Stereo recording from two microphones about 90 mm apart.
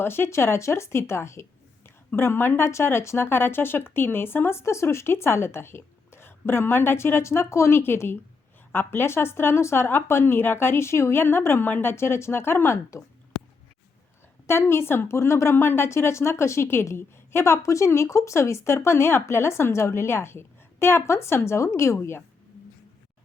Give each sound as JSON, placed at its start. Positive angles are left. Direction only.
{"t": 0.0, "sound": "a woman's voice", "side_deg": 25}
{"t": 14.4, "sound": "a woman's voice", "side_deg": 25}